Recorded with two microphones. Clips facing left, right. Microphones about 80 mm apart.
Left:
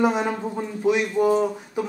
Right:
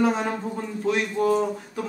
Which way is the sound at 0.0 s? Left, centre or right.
Centre.